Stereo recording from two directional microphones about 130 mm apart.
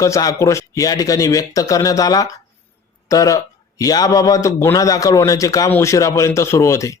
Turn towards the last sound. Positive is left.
turn(degrees=25)  # may be behind; listen again after turning